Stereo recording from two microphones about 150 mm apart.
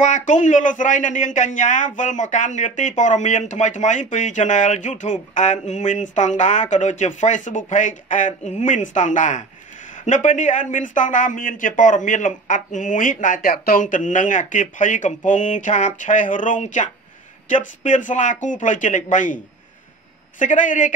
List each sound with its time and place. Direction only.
0.0 s speech: 55° left (ahead or behind)